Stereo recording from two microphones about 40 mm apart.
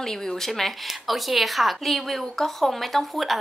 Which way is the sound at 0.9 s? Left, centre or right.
Centre.